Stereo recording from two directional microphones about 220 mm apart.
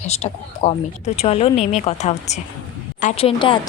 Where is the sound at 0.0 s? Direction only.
30° left (ahead or behind).